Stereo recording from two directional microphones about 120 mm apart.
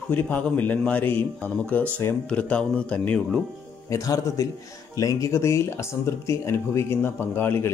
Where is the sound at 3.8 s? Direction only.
25° left (ahead or behind).